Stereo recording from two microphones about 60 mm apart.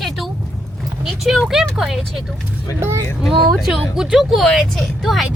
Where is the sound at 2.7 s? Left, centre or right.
Right.